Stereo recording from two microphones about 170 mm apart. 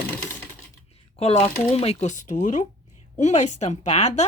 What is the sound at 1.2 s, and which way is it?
A woman's voice, 40° left (ahead or behind).